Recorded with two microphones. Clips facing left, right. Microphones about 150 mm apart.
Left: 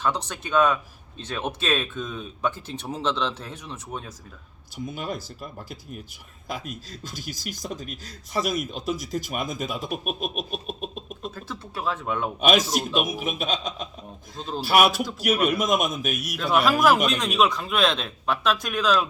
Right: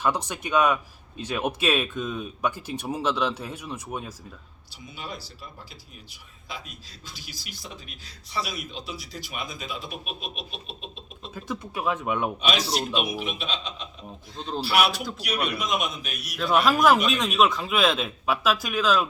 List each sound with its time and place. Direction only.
0.0 s speech: 10° right (ahead or behind)
4.9 s speech: 50° left (ahead or behind)
6.5 s speech: 45° left (ahead or behind)
11.3 s speech: 15° right (ahead or behind)
12.4 s speech: 50° left (ahead or behind)
16.3 s a man's voice: centre (ahead or behind)